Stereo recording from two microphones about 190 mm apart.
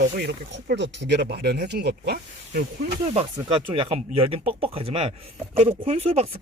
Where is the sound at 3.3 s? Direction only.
30° right (ahead or behind).